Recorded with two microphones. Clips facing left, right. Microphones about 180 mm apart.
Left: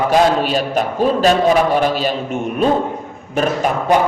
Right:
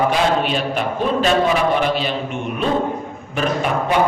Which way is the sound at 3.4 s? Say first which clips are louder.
Left 3 dB; 40° left (ahead or behind).